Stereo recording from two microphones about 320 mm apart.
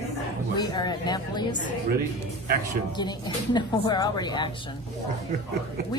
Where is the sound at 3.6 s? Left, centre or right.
Centre.